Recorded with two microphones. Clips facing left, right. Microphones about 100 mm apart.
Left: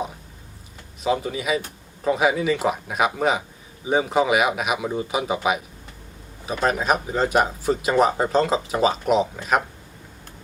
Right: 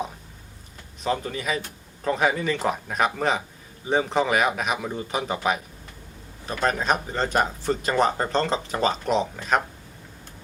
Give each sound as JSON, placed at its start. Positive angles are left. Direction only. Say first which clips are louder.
{"t": 1.0, "sound": "a man's voice", "louder": "left 3 dB", "side_deg": 5}